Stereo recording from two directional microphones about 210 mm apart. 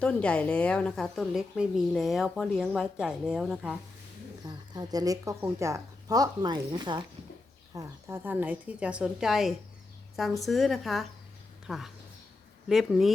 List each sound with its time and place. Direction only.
0.0 s a woman's voice: 5° left (ahead or behind)
4.4 s a woman's voice: 20° right (ahead or behind); by 13.1 s centre (ahead or behind)